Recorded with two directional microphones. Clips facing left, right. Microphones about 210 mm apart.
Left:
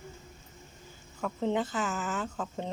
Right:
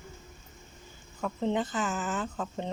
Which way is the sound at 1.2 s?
Centre (ahead or behind).